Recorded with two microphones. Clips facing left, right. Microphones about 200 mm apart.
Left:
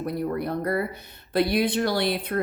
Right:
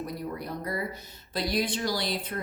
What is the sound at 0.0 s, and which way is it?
A woman's voice, 60° left (ahead or behind).